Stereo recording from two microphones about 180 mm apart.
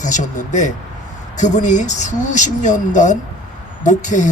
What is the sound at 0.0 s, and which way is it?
Speech, 45° left (ahead or behind).